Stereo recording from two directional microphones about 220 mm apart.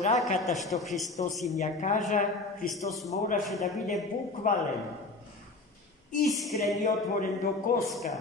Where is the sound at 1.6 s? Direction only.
35° left (ahead or behind).